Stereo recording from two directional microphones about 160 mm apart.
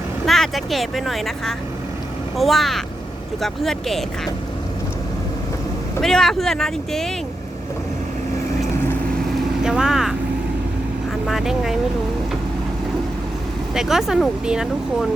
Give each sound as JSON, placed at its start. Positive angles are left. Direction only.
{"t": 0.3, "sound": "speech", "side_deg": 0}
{"t": 6.0, "sound": "speech", "side_deg": 5}
{"t": 9.6, "sound": "speech", "side_deg": -5}
{"t": 11.3, "sound": "speech", "side_deg": 0}
{"t": 13.7, "sound": "speech", "side_deg": -5}